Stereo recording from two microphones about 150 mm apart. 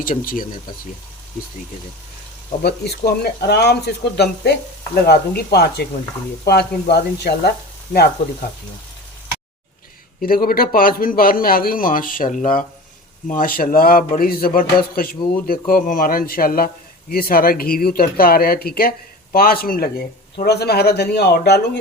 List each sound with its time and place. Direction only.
0.0 s a man's voice: 70° left (ahead or behind)
2.6 s speech: 90° left
10.2 s a man's voice: 75° left (ahead or behind)